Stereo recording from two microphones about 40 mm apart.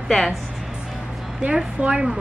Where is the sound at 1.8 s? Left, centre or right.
Right.